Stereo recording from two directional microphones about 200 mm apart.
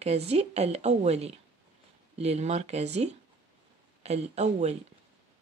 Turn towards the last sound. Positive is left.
turn(degrees=-35)  # may be behind; listen again after turning